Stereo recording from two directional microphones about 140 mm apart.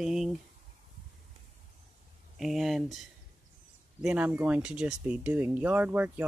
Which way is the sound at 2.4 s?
Centre (ahead or behind).